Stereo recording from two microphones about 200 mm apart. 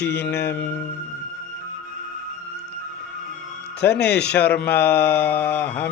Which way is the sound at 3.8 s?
55° left (ahead or behind).